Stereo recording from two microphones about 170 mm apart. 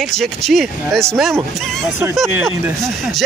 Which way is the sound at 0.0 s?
Centre (ahead or behind).